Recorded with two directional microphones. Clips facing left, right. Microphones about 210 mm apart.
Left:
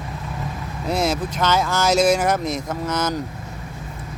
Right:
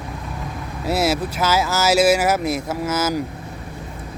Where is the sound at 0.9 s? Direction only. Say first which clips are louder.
Right 2 dB; 5° right (ahead or behind).